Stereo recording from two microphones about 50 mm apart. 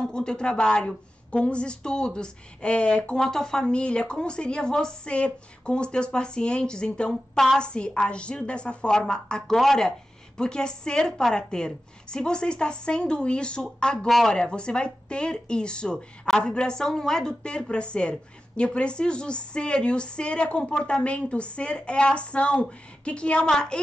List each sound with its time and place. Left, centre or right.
0.0 s a woman's voice: centre
3.2 s a woman's voice: centre
9.6 s speech: centre
9.8 s a woman's voice: centre
13.9 s speech: centre
14.3 s a woman's voice: centre